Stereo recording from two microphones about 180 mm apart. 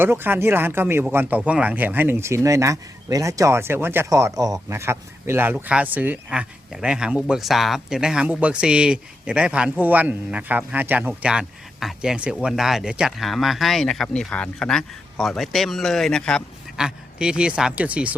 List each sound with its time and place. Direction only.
0.0 s speech: 10° right (ahead or behind)